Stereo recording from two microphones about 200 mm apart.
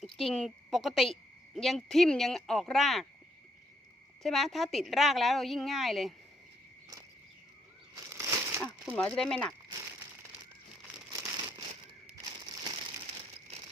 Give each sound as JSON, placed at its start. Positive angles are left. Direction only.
{"t": 0.0, "sound": "a woman's voice", "side_deg": 0}
{"t": 4.2, "sound": "a woman's voice", "side_deg": 0}
{"t": 8.1, "sound": "crumpling", "side_deg": -15}
{"t": 8.6, "sound": "a woman's voice", "side_deg": 0}
{"t": 11.1, "sound": "crumpling", "side_deg": -15}